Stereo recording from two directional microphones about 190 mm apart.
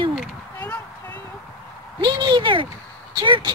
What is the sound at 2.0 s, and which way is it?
Speech, 25° right (ahead or behind).